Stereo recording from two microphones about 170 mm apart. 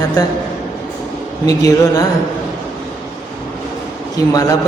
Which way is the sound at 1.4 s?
20° left (ahead or behind).